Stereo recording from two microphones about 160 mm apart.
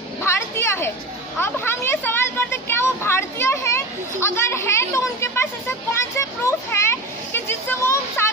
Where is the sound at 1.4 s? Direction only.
15° left (ahead or behind).